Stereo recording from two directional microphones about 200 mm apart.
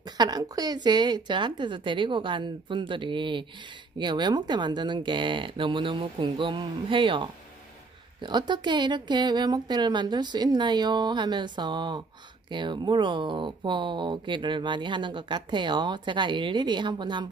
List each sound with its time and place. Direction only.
0.0 s speech: 20° right (ahead or behind)